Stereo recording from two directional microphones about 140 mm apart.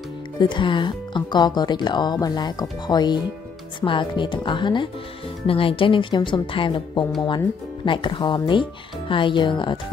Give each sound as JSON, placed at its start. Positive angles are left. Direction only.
{"t": 0.4, "sound": "speech", "side_deg": 35}